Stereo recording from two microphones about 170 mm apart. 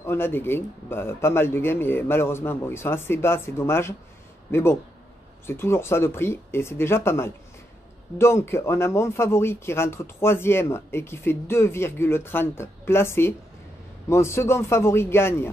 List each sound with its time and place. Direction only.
0.0 s speech: 15° left (ahead or behind)